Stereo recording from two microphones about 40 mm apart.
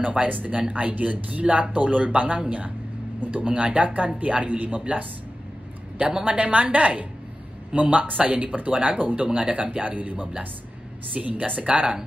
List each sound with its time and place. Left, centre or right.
0.0 s speech: right
6.2 s speech: right